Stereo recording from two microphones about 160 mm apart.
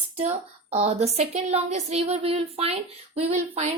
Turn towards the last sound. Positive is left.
turn(degrees=-40)  # may be behind; listen again after turning